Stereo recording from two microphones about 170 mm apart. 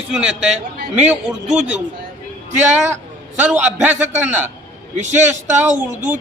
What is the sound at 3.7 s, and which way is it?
Speech, 10° right (ahead or behind).